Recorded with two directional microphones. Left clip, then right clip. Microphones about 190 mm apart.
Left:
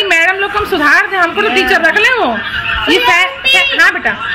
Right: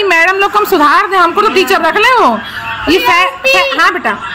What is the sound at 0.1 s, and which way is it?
A woman's voice, 65° right (ahead or behind).